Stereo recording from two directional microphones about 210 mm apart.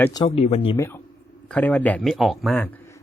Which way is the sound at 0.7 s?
10° left (ahead or behind).